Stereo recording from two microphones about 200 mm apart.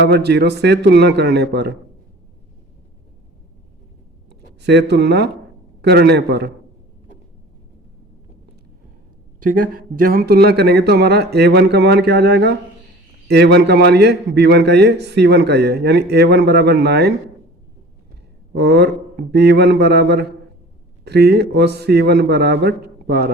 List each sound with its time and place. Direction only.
0.0 s a man's voice: 55° right (ahead or behind)
4.3 s a man's voice: 60° right (ahead or behind)
9.4 s a man's voice: 45° right (ahead or behind)
18.5 s a man's voice: 55° right (ahead or behind)